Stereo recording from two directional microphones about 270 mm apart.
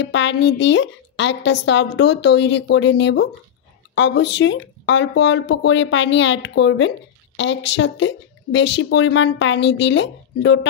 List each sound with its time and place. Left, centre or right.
0.0 s speech: left